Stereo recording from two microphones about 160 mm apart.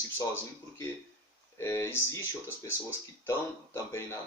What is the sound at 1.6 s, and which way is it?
Speech, 15° left (ahead or behind).